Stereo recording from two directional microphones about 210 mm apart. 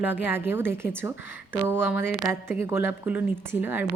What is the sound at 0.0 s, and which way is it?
Speech, 10° right (ahead or behind).